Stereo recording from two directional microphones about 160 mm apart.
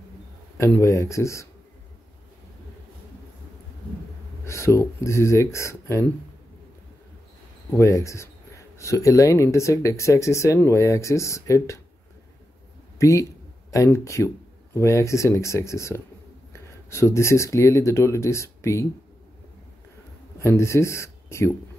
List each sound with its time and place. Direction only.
0.6 s speech: 15° left (ahead or behind)
4.5 s speech: 20° left (ahead or behind)
7.7 s speech: 20° left (ahead or behind)
13.0 s speech: 20° left (ahead or behind)
20.3 s speech: 15° left (ahead or behind)